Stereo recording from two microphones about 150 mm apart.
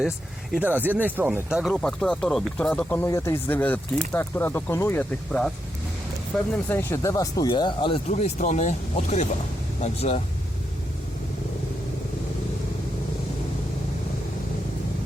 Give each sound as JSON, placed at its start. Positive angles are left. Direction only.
{"t": 0.5, "sound": "speech", "side_deg": -10}
{"t": 6.5, "sound": "speech", "side_deg": 15}
{"t": 8.0, "sound": "speech", "side_deg": 50}